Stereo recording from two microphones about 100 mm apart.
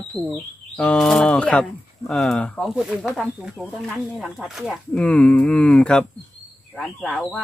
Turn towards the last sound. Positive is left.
turn(degrees=0)  # may be behind; listen again after turning